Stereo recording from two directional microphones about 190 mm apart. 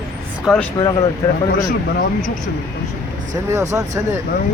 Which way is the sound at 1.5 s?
45° left (ahead or behind).